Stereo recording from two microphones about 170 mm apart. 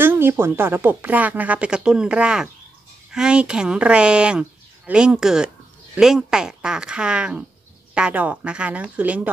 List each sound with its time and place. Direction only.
0.0 s speech: 10° right (ahead or behind)